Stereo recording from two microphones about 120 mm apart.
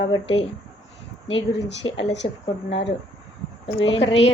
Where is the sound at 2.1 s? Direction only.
55° left (ahead or behind).